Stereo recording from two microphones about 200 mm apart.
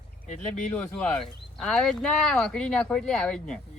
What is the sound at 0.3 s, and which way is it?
Speech, 35° left (ahead or behind).